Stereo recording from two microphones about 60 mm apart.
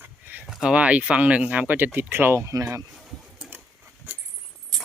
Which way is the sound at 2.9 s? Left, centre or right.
Centre.